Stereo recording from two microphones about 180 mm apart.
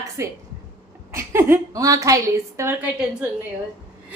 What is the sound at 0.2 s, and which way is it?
A woman's voice, 15° right (ahead or behind).